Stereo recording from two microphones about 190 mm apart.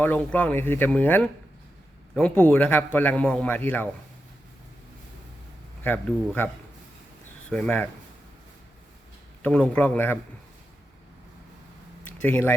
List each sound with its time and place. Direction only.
0.0 s a man's voice: 10° left (ahead or behind)
5.8 s a man's voice: 10° left (ahead or behind)
7.5 s a man's voice: 10° left (ahead or behind)
9.4 s a man's voice: 5° left (ahead or behind)
12.0 s speech: 10° left (ahead or behind)